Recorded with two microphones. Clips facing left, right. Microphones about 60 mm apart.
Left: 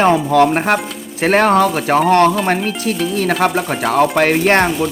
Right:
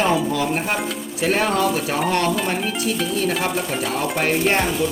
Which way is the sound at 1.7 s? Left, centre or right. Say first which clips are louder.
Left 9 dB; left.